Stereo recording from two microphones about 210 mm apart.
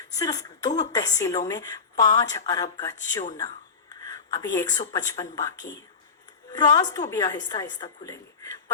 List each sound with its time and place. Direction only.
0.1 s a woman's voice: 15° left (ahead or behind)
3.3 s a sound: 20° left (ahead or behind)
4.9 s a woman's voice: 15° left (ahead or behind)